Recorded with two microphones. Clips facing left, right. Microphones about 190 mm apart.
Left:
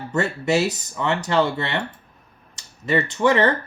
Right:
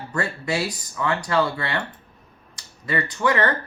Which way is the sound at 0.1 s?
25° left (ahead or behind).